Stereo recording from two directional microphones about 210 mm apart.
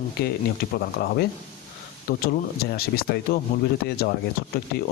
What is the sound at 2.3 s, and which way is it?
Speech, 45° left (ahead or behind).